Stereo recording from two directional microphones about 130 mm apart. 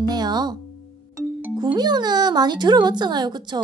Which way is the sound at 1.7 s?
35° right (ahead or behind).